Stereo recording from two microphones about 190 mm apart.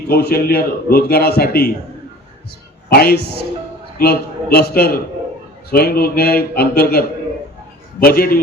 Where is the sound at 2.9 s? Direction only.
55° left (ahead or behind).